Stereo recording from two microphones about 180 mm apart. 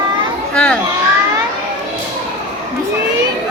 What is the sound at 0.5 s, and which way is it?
Children playing, 5° left (ahead or behind).